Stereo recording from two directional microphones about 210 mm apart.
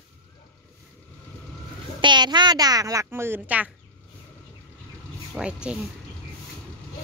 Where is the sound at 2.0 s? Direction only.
20° right (ahead or behind).